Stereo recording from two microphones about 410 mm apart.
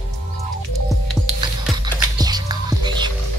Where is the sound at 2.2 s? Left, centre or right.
Centre.